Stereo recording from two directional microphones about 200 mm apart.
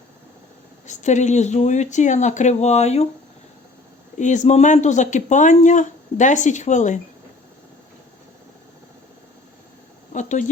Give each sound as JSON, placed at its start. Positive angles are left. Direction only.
{"t": 0.9, "sound": "speech", "side_deg": 35}
{"t": 4.2, "sound": "speech", "side_deg": 35}
{"t": 10.1, "sound": "a sound", "side_deg": 35}